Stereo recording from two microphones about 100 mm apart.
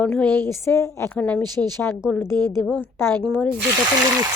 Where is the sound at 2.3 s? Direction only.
45° right (ahead or behind).